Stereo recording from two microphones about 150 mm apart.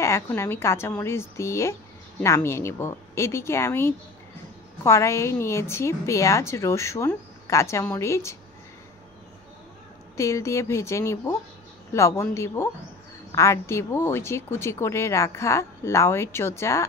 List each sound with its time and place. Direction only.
0.0 s a woman's voice: 20° left (ahead or behind)
10.1 s a woman's voice: 20° left (ahead or behind)